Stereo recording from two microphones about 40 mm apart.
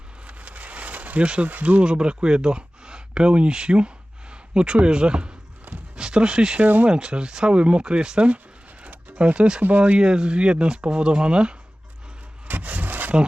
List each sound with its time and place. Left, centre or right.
0.3 s a sound: right
1.2 s speech: right
1.5 s speech: right
1.9 s speech: right
6.6 s speech: right
6.8 s speech: right
9.6 s speech: right
10.0 s speech: right
12.5 s wood: right